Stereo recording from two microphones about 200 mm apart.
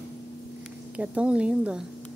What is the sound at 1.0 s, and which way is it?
Speech, 5° right (ahead or behind).